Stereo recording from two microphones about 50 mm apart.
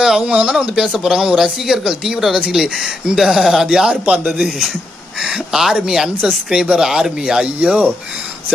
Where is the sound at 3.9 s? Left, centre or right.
Right.